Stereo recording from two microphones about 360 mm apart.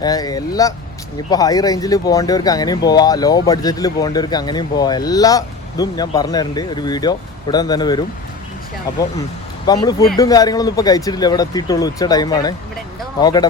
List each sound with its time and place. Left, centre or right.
0.0 s speech: centre
9.6 s speech: centre